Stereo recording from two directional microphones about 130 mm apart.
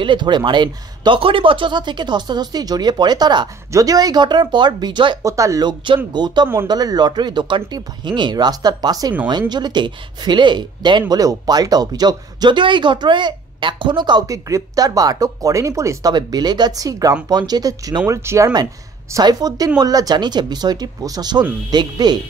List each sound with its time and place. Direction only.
0.0 s speech: 35° right (ahead or behind)
5.3 s speech: 25° right (ahead or behind)